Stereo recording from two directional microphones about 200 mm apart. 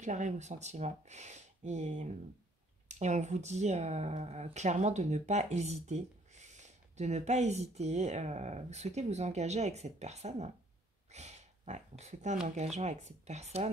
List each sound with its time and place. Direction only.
0.0 s speech: 35° right (ahead or behind)
11.1 s a sound: 35° right (ahead or behind)
12.0 s speech: 35° right (ahead or behind)